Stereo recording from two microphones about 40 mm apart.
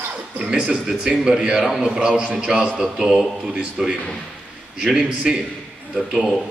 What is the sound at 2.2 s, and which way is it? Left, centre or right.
Speech, right.